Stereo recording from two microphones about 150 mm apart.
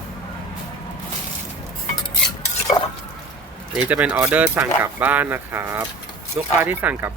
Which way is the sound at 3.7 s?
10° right (ahead or behind).